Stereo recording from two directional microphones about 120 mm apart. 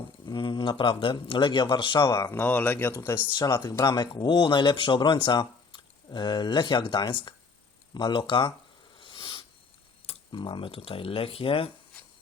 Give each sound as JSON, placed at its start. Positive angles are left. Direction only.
{"t": 0.3, "sound": "speech", "side_deg": 40}
{"t": 2.3, "sound": "speech", "side_deg": 15}
{"t": 3.3, "sound": "speech", "side_deg": 40}
{"t": 9.0, "sound": "a sound", "side_deg": 45}
{"t": 10.1, "sound": "speech", "side_deg": 40}